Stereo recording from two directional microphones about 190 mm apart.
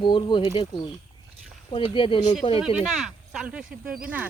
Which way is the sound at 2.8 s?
Centre (ahead or behind).